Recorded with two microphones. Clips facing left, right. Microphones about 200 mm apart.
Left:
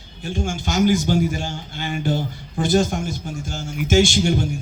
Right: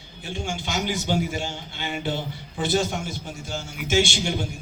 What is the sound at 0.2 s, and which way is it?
A man's voice, 45° left (ahead or behind).